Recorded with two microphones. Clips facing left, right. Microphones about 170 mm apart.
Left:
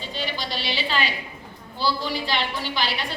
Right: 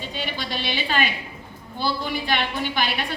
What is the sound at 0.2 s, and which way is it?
A woman's voice, 55° right (ahead or behind).